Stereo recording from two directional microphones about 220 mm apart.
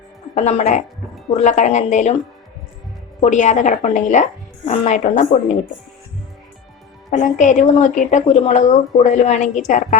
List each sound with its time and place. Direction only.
0.3 s a woman's voice: 30° left (ahead or behind)
3.2 s a woman's voice: 35° left (ahead or behind)
7.1 s a woman's voice: 35° left (ahead or behind)